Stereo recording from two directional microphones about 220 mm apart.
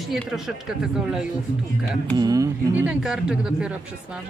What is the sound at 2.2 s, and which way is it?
Speech, 15° right (ahead or behind).